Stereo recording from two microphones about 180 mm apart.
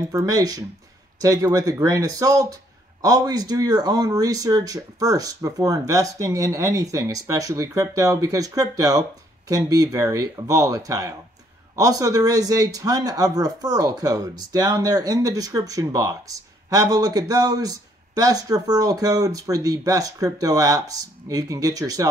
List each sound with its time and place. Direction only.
0.1 s speech: 20° right (ahead or behind)